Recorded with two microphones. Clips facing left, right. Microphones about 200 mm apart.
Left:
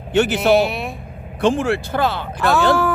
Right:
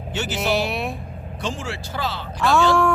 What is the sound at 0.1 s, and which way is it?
Speech, 60° left (ahead or behind).